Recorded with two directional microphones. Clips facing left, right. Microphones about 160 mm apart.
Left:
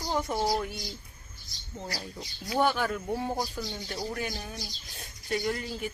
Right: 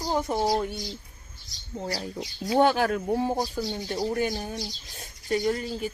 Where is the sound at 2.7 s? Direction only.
85° right.